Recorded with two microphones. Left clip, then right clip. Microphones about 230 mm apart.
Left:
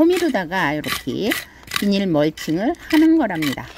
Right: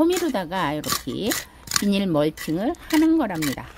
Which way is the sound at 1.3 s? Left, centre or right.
Centre.